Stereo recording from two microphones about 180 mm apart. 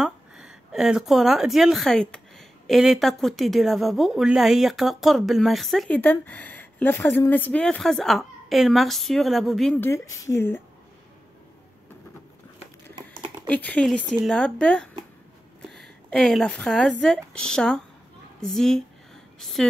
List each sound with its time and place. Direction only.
0.0 s a woman's voice: 5° right (ahead or behind)
9.8 s speech: 15° left (ahead or behind)
13.5 s a woman's voice: 10° left (ahead or behind)
16.1 s a woman's voice: 5° left (ahead or behind)